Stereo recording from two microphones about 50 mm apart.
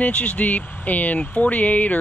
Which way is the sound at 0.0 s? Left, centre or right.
Left.